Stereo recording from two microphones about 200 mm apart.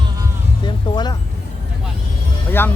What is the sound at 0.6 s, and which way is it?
Music, 20° left (ahead or behind).